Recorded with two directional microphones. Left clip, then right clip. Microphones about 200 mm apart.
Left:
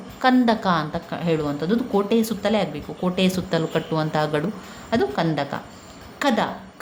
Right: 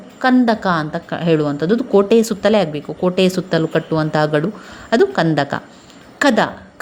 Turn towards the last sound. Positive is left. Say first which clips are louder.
# right 7 dB
turn(degrees=-30)  # may be behind; listen again after turning